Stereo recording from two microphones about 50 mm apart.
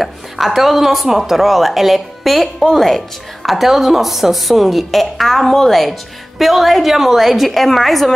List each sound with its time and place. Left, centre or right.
0.6 s a woman's voice: centre
3.4 s a woman's voice: centre